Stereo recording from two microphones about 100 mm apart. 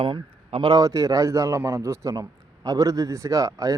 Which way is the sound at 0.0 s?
60° right (ahead or behind).